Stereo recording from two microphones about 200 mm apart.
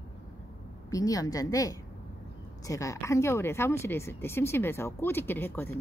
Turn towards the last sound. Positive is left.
turn(degrees=10)  # may be behind; listen again after turning